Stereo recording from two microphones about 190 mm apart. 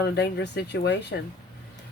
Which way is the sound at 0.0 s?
60° left (ahead or behind).